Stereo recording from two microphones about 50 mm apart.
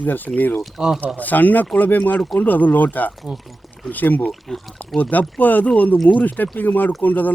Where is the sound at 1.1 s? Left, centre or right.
Left.